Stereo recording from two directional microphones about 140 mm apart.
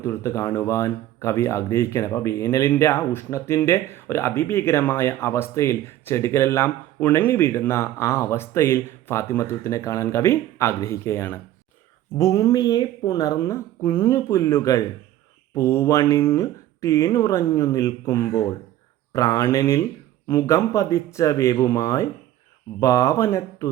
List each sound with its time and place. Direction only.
0.0 s speech: 20° left (ahead or behind)